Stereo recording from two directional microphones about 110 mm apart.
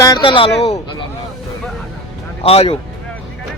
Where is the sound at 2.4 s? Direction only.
60° left (ahead or behind).